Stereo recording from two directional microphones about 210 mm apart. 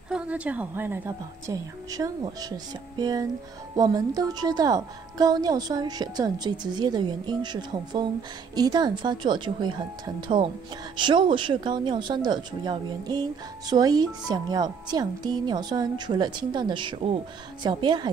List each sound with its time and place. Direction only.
0.1 s a woman's voice: 5° right (ahead or behind)